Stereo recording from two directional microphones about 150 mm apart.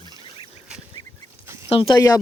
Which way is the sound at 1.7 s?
35° left (ahead or behind).